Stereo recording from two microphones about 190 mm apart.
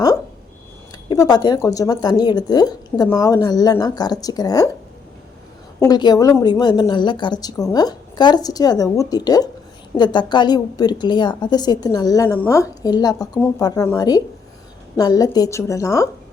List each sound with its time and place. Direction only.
1.0 s a woman's voice: 20° left (ahead or behind)
5.8 s a woman's voice: 20° left (ahead or behind)